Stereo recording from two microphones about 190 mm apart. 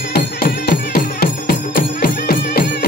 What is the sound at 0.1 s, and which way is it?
Music, 55° left (ahead or behind).